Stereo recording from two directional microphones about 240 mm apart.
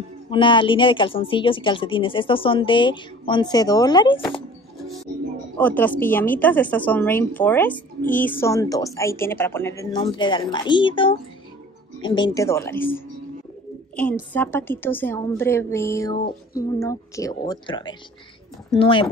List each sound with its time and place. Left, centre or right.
0.3 s speech: left
5.6 s a woman's voice: centre
14.3 s a woman's voice: centre